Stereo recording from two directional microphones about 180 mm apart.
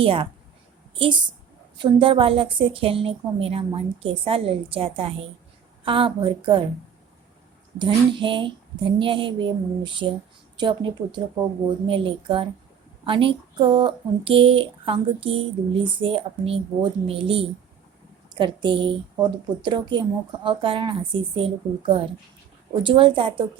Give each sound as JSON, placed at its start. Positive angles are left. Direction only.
{"t": 0.0, "sound": "a woman's voice", "side_deg": -30}
{"t": 7.8, "sound": "speech", "side_deg": -25}